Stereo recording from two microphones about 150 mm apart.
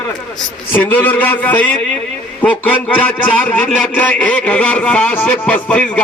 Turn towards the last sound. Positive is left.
turn(degrees=10)  # may be behind; listen again after turning